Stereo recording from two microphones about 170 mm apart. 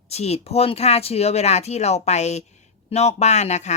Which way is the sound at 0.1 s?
40° left (ahead or behind).